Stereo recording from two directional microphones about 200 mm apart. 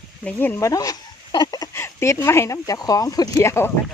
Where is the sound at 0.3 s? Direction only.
10° left (ahead or behind).